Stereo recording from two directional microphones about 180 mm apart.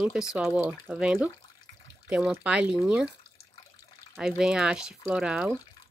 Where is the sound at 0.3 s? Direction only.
5° right (ahead or behind).